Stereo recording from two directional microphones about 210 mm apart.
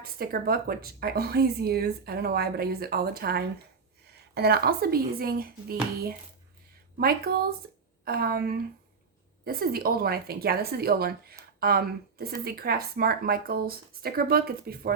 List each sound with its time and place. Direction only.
0.0 s a woman's voice: 45° right (ahead or behind)
6.9 s a woman's voice: 45° right (ahead or behind)